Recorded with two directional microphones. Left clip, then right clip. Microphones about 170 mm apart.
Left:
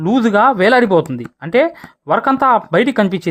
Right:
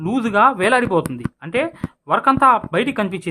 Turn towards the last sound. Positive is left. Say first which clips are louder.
# left 6 dB
turn(degrees=40)  # may be behind; listen again after turning